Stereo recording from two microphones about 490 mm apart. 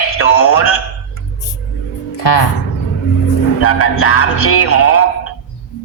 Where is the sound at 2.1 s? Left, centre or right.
Left.